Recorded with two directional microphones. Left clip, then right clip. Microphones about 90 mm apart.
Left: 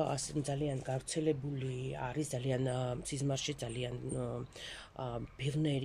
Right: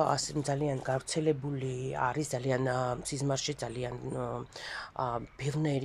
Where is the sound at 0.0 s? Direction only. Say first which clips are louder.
Right 7 dB; 30° left (ahead or behind).